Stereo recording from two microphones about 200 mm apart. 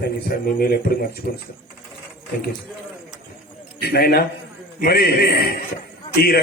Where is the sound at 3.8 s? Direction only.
50° left (ahead or behind).